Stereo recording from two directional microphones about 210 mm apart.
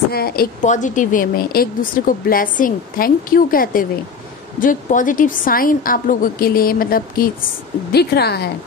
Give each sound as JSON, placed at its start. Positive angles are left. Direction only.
{"t": 0.1, "sound": "a woman's voice", "side_deg": 45}